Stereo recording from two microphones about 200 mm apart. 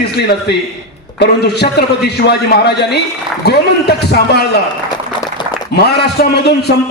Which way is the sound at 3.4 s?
55° left (ahead or behind).